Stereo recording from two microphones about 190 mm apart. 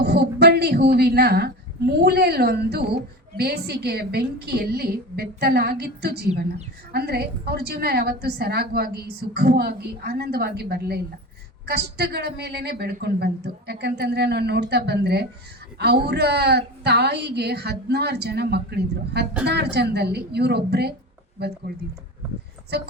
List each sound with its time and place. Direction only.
0.0 s a woman's voice: 55° right (ahead or behind)
22.7 s a woman's voice: 60° right (ahead or behind)